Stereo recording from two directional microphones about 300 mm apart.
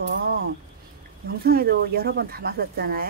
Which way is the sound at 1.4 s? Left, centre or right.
Right.